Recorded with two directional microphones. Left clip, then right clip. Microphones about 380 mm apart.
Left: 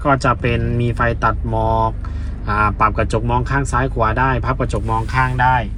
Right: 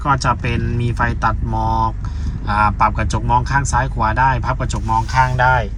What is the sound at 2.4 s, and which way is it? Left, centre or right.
Speech, centre.